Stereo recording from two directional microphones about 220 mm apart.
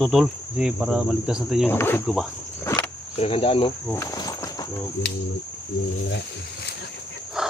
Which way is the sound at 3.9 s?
15° left (ahead or behind).